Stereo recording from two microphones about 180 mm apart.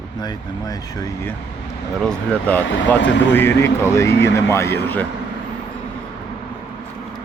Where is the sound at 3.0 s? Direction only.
80° left.